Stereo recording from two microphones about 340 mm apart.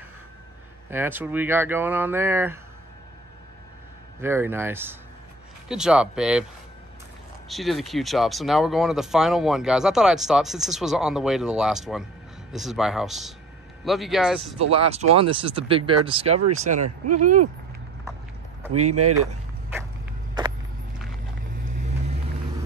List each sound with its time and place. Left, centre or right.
0.8 s speech: centre
4.2 s speech: centre
7.4 s speech: centre
14.7 s speech: centre
18.7 s speech: right